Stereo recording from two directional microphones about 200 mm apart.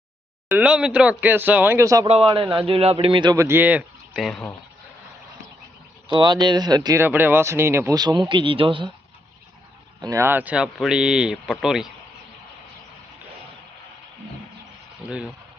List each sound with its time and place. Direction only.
0.4 s speech: 5° right (ahead or behind)
2.0 s speech: 30° right (ahead or behind); by 4.5 s centre (ahead or behind)
6.1 s speech: 20° right (ahead or behind)
10.0 s speech: 15° right (ahead or behind)
15.0 s speech: 5° right (ahead or behind)